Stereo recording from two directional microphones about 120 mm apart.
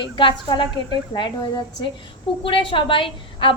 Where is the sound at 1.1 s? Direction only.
40° left (ahead or behind).